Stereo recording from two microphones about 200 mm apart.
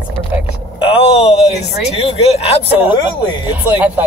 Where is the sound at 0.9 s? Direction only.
30° left (ahead or behind).